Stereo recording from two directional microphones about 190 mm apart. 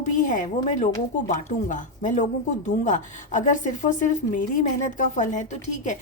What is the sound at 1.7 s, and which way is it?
A woman's voice, 40° left (ahead or behind).